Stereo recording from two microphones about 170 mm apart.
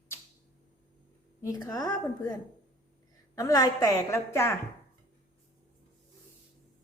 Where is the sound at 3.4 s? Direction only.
20° left (ahead or behind).